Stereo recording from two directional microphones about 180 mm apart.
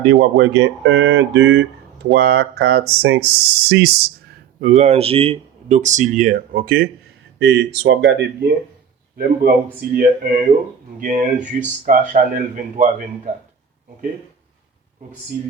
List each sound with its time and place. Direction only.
0.1 s speech: 85° right
2.1 s speech: 65° right (ahead or behind)
4.6 s speech: 40° right (ahead or behind)
7.4 s speech: 70° right (ahead or behind)
9.1 s speech: 55° right (ahead or behind)